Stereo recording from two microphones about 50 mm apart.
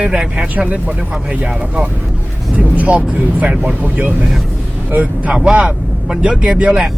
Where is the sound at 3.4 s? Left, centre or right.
Centre.